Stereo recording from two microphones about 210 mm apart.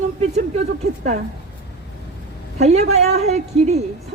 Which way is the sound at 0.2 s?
30° right (ahead or behind).